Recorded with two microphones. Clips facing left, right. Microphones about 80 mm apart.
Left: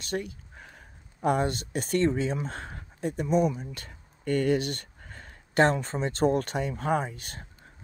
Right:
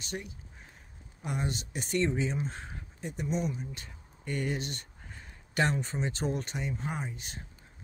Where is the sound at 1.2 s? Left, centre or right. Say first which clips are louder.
Left 9 dB; left.